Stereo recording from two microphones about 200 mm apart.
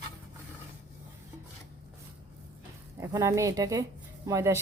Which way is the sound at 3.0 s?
15° right (ahead or behind).